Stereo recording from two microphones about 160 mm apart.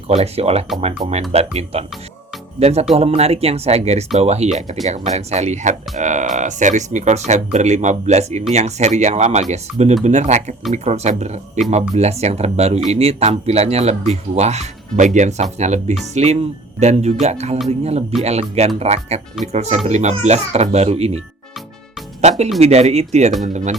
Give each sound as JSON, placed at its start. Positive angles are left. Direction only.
{"t": 0.1, "sound": "speech", "side_deg": -40}
{"t": 22.2, "sound": "speech", "side_deg": -45}